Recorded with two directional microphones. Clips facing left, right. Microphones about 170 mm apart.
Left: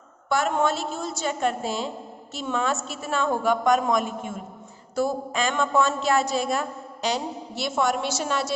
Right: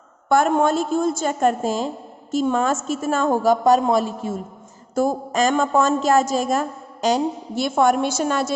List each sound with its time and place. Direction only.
0.3 s a woman's voice: 50° right (ahead or behind); by 4.4 s 35° right (ahead or behind)
4.9 s a woman's voice: 45° right (ahead or behind)